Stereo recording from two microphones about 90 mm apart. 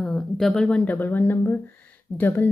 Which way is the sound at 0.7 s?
15° left (ahead or behind).